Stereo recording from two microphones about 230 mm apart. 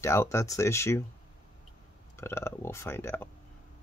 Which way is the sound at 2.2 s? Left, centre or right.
Centre.